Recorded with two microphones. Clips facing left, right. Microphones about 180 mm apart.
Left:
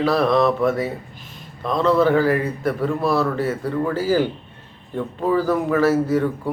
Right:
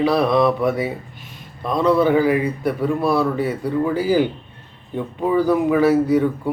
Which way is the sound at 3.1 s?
15° right (ahead or behind).